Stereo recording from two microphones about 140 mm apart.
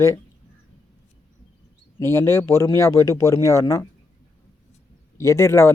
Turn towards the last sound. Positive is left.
turn(degrees=20)  # may be behind; listen again after turning